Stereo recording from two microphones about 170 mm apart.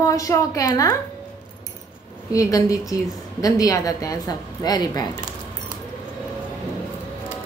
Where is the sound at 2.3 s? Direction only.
20° left (ahead or behind).